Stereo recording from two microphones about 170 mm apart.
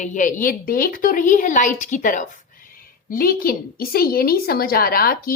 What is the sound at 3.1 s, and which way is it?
A woman's voice, 60° left (ahead or behind).